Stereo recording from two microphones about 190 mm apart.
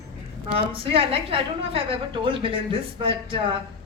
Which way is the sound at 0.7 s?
30° right (ahead or behind).